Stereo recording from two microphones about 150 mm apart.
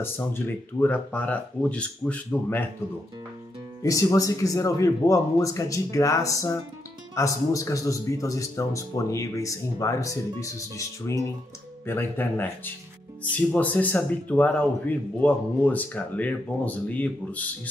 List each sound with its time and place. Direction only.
0.0 s speech: 15° left (ahead or behind)
3.8 s speech: 20° left (ahead or behind)